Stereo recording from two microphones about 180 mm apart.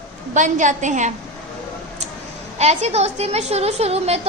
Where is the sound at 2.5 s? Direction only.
35° right (ahead or behind).